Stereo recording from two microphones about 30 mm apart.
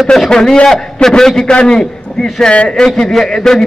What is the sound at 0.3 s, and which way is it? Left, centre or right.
A man's voice, left.